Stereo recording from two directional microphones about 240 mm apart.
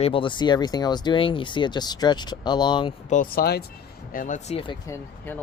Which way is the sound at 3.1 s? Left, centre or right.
Left.